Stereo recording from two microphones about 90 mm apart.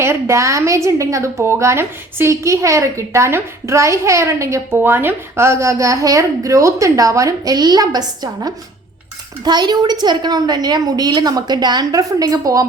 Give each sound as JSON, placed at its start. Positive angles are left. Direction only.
{"t": 0.0, "sound": "a woman's voice", "side_deg": -30}